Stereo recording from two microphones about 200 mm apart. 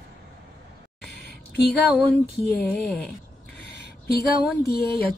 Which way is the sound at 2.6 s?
5° left (ahead or behind).